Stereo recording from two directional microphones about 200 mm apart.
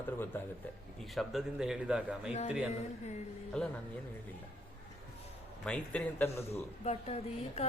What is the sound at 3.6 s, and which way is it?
Speech, 5° left (ahead or behind).